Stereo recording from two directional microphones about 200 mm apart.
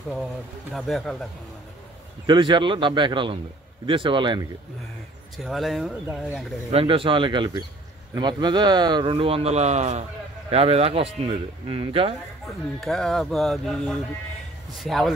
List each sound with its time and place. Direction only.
0.7 s speech: centre (ahead or behind)
2.2 s a man's voice: 25° right (ahead or behind)
5.4 s speech: centre (ahead or behind)
6.7 s a man's voice: 25° right (ahead or behind)
12.8 s speech: centre (ahead or behind)